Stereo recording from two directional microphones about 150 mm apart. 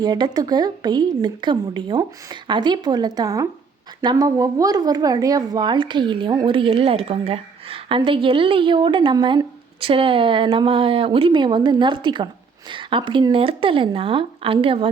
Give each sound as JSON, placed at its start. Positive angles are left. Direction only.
{"t": 0.0, "sound": "a woman's voice", "side_deg": -25}